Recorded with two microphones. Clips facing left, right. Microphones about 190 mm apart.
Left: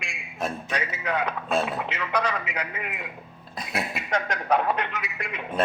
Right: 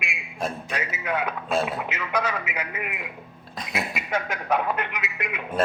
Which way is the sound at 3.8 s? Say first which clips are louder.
Even; 5° right (ahead or behind).